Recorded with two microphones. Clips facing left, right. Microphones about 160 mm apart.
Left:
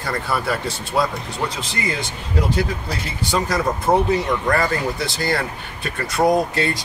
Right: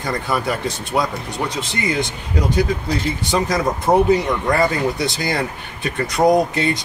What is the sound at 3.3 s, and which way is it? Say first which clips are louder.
Speech: even; 20° right (ahead or behind).